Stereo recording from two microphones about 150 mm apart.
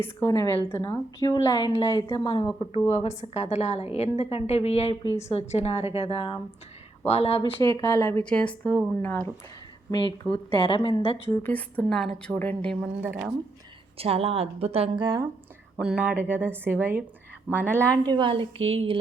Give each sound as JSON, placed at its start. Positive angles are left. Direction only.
{"t": 0.0, "sound": "a woman's voice", "side_deg": 15}
{"t": 2.9, "sound": "a woman's voice", "side_deg": 45}
{"t": 7.6, "sound": "a woman's voice", "side_deg": 25}
{"t": 8.2, "sound": "a woman's voice", "side_deg": 5}
{"t": 9.9, "sound": "a woman's voice", "side_deg": 30}
{"t": 11.3, "sound": "a woman's voice", "side_deg": 10}
{"t": 13.0, "sound": "a woman's voice", "side_deg": -10}
{"t": 14.0, "sound": "a woman's voice", "side_deg": -40}
{"t": 15.0, "sound": "speech", "side_deg": -25}
{"t": 15.8, "sound": "a woman's voice", "side_deg": -5}
{"t": 18.0, "sound": "a woman's voice", "side_deg": -30}